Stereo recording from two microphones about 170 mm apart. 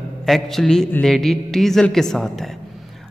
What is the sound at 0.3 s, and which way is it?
A man's voice, centre (ahead or behind).